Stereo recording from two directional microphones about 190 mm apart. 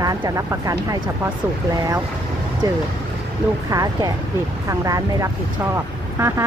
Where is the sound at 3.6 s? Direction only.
20° right (ahead or behind).